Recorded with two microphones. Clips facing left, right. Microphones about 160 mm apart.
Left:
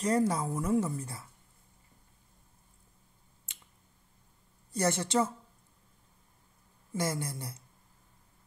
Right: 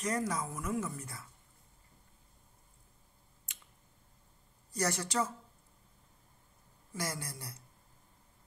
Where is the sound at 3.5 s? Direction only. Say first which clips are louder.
Even; 30° left (ahead or behind).